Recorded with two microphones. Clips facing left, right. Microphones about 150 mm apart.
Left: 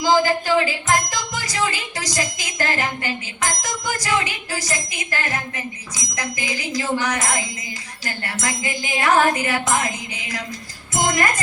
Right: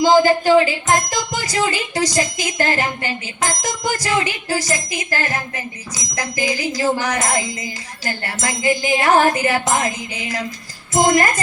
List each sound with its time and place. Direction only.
0.0 s a woman's voice: 30° right (ahead or behind)